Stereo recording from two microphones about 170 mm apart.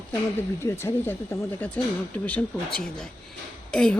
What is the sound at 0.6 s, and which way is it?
Speech, 15° left (ahead or behind).